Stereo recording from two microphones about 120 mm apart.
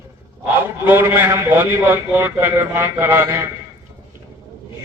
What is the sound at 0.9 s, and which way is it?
A man's voice, 20° right (ahead or behind).